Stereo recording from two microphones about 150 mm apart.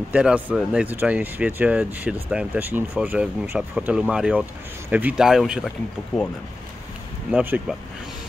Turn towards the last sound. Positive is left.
turn(degrees=-10)  # may be behind; listen again after turning